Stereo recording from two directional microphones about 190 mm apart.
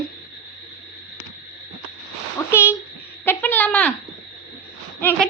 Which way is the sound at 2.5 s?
15° left (ahead or behind).